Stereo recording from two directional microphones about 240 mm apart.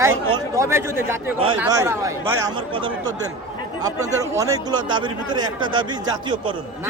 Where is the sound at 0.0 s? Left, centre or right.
Centre.